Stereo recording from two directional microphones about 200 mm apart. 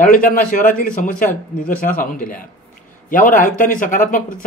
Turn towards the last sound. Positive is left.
turn(degrees=40)  # may be behind; listen again after turning